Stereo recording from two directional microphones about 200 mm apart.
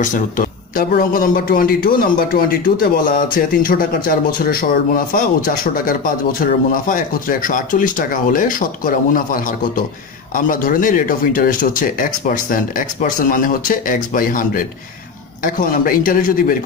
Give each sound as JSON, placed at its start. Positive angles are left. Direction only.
{"t": 0.0, "sound": "a man's voice", "side_deg": 40}